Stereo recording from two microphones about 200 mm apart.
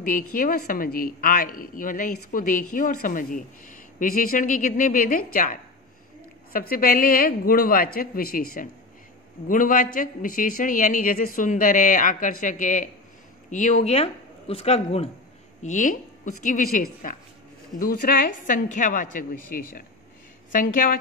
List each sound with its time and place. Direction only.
0.3 s a man's voice: 45° left (ahead or behind)